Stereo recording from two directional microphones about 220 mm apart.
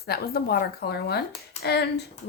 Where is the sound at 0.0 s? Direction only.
45° left (ahead or behind).